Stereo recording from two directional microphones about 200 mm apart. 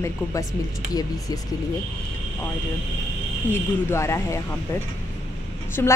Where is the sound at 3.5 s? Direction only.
15° left (ahead or behind).